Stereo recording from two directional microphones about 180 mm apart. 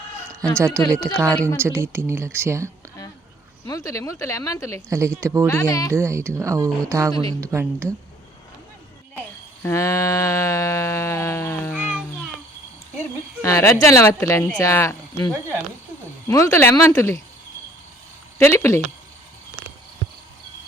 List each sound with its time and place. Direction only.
0.9 s speech: 15° right (ahead or behind)
3.7 s a woman's voice: 20° left (ahead or behind)
4.9 s speech: 15° right (ahead or behind)
5.5 s speech: 20° left (ahead or behind)
5.9 s speech: 15° right (ahead or behind)
7.1 s speech: 20° left (ahead or behind)
7.4 s speech: 15° right (ahead or behind)
9.6 s a sound: 15° left (ahead or behind)
11.7 s child singing: 5° right (ahead or behind)
13.4 s a woman's voice: 15° left (ahead or behind)
16.3 s a woman's voice: 15° left (ahead or behind)
18.3 s a woman's voice: 15° left (ahead or behind)